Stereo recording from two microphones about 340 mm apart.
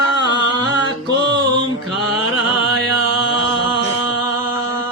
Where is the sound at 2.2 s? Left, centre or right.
Left.